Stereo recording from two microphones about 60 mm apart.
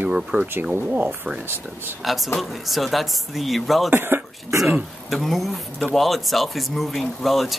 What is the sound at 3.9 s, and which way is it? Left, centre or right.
Speech, right.